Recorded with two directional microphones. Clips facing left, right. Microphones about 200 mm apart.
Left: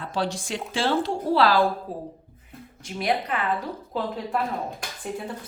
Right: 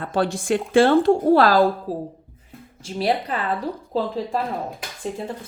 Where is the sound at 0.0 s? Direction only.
55° right (ahead or behind); by 3.4 s 30° right (ahead or behind).